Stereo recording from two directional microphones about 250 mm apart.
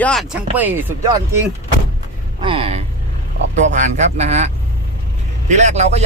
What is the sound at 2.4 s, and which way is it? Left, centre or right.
Vehicle, right.